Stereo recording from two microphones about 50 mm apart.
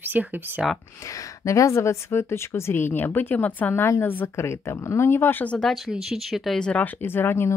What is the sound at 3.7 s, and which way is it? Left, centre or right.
Speech, left.